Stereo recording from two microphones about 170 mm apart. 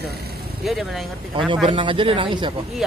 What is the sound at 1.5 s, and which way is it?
Speech, 30° right (ahead or behind).